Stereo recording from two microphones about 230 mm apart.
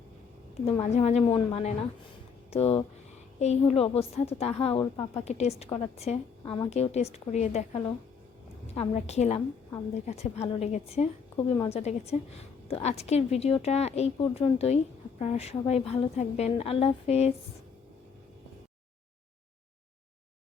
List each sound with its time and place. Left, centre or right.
0.6 s a woman's voice: left